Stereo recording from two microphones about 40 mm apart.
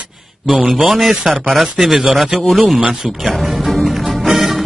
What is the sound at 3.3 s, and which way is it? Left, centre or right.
Music, centre.